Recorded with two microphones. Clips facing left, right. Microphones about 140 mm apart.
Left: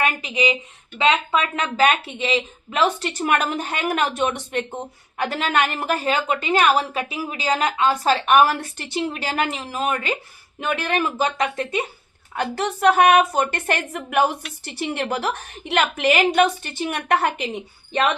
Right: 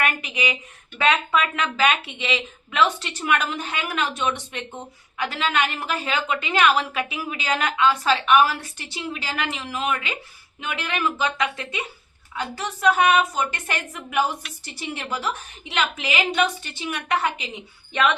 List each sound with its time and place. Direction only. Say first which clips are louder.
0.0 s a woman's voice: left 4 dB; 30° left (ahead or behind)
12.3 s a woman's voice: left 6 dB; 60° left (ahead or behind)
17.9 s speech: left 1 dB; 40° left (ahead or behind)